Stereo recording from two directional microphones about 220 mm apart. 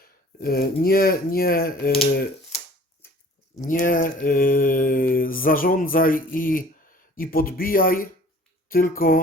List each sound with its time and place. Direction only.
0.0 s speech: 45° left (ahead or behind)
3.7 s mantra: 40° left (ahead or behind)